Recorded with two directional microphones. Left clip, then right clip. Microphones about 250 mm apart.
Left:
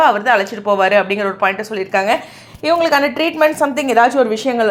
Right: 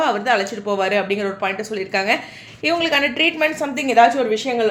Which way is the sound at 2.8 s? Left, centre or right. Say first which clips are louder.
Left 3 dB; left.